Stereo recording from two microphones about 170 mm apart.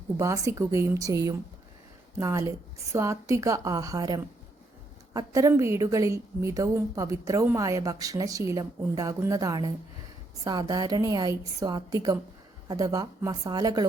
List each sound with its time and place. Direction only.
0.2 s a woman's voice: 20° right (ahead or behind)